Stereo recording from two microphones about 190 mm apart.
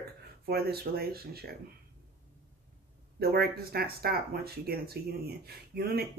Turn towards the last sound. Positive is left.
turn(degrees=-55)  # may be behind; listen again after turning